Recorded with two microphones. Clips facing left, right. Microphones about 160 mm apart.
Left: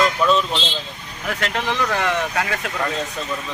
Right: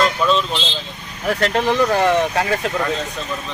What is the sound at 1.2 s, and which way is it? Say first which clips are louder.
Speech: right 6 dB; 35° right (ahead or behind).